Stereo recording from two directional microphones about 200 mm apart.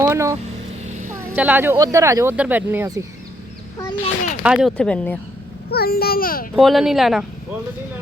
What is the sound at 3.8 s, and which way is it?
Speech, 15° left (ahead or behind).